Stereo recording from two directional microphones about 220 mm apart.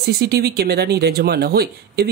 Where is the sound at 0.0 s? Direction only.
45° right (ahead or behind).